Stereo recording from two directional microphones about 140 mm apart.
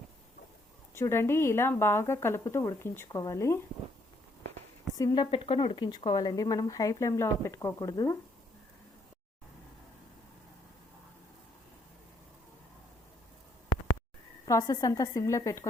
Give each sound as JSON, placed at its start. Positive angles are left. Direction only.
{"t": 0.9, "sound": "speech", "side_deg": 20}
{"t": 4.9, "sound": "speech", "side_deg": 25}
{"t": 14.4, "sound": "speech", "side_deg": 25}